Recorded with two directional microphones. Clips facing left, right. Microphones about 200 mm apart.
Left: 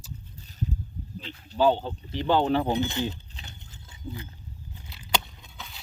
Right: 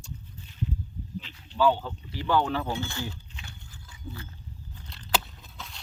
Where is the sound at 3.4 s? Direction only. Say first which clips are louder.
Even; 20° left (ahead or behind).